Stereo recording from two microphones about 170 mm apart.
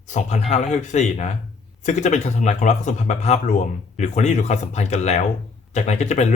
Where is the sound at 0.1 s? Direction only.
45° left (ahead or behind).